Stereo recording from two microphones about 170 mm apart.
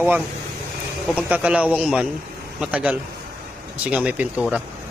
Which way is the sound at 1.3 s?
5° right (ahead or behind).